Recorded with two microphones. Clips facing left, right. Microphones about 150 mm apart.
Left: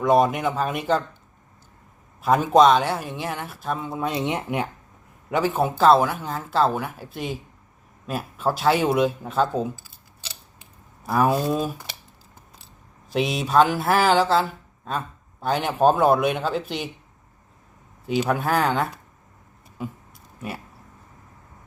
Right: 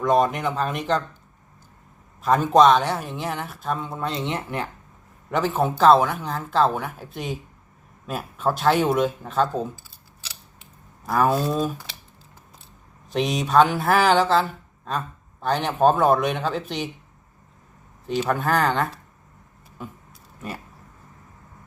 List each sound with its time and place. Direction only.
0.0 s speech: 5° left (ahead or behind)
2.2 s speech: 10° left (ahead or behind)
11.0 s speech: 5° left (ahead or behind)
13.1 s speech: 5° left (ahead or behind)
18.0 s speech: 10° left (ahead or behind)